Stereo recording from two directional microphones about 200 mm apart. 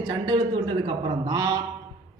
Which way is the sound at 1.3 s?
20° right (ahead or behind).